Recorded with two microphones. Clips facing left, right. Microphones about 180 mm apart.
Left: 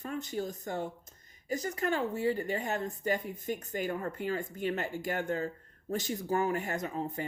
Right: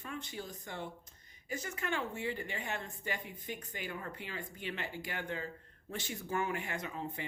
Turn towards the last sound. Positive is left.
turn(degrees=40)  # may be behind; listen again after turning